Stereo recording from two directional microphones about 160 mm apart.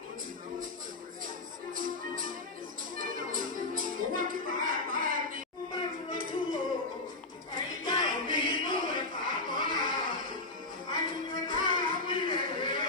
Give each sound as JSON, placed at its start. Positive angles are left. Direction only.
{"t": 1.7, "sound": "music", "side_deg": -60}
{"t": 7.5, "sound": "a sound", "side_deg": -60}
{"t": 8.8, "sound": "music", "side_deg": -60}